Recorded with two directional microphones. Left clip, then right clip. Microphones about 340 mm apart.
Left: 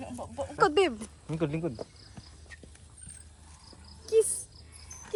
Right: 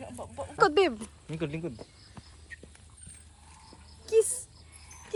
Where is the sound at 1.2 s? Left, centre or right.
Left.